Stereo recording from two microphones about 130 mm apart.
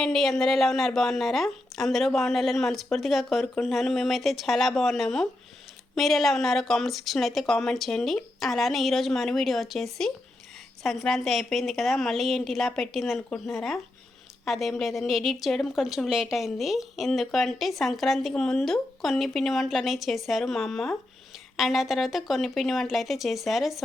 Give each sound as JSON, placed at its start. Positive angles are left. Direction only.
{"t": 0.0, "sound": "a woman's voice", "side_deg": 5}